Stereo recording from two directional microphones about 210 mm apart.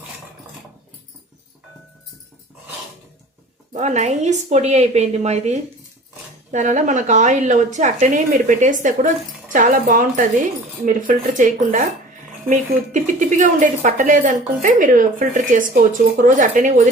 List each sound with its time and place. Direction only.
3.7 s a woman's voice: 35° right (ahead or behind)